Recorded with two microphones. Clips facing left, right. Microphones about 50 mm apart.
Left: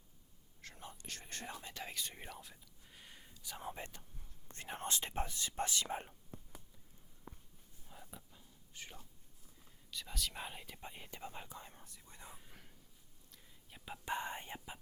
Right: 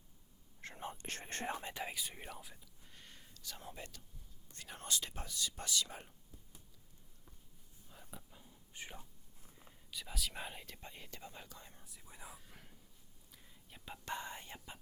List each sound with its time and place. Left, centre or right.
0.6 s whispering: right
1.7 s speech: centre; by 6.1 s left
7.3 s a sound: left
7.9 s a sound: centre
8.7 s speech: centre
9.9 s speech: centre
11.9 s speech: centre
13.3 s whispering: centre
14.1 s speech: left